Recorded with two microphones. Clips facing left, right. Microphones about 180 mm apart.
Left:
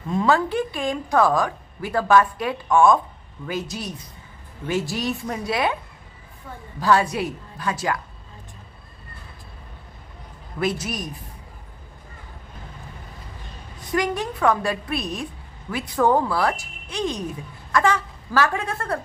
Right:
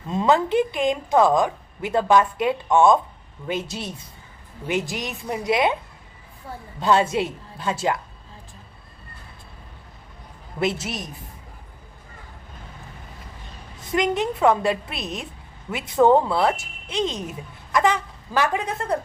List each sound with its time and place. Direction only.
0.1 s speech: 20° right (ahead or behind)
6.7 s speech: 25° right (ahead or behind)
10.6 s speech: 25° right (ahead or behind)
13.9 s speech: 20° right (ahead or behind)